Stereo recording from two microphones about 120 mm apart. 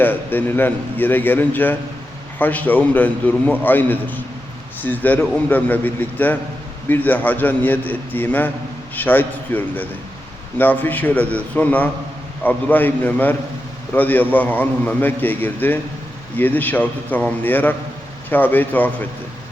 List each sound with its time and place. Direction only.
0.0 s a man's voice: 15° left (ahead or behind)